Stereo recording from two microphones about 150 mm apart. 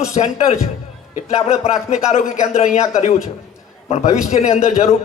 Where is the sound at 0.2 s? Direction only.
45° left (ahead or behind).